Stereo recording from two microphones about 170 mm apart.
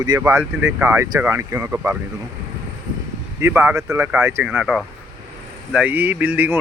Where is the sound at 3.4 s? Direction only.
10° right (ahead or behind).